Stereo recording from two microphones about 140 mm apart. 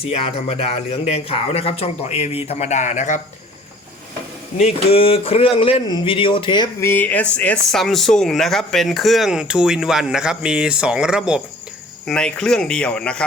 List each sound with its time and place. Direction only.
0.0 s speech: 45° left (ahead or behind); by 3.2 s 60° left (ahead or behind)
4.5 s speech: 50° left (ahead or behind)
6.7 s speech: 15° left (ahead or behind); by 11.3 s 5° right (ahead or behind)
12.0 s speech: 5° left (ahead or behind)